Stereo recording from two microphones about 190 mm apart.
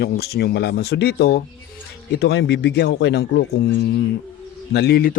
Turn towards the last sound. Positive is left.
turn(degrees=50)  # may be behind; listen again after turning